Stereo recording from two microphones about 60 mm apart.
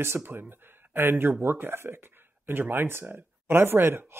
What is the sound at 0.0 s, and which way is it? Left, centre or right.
Speech, right.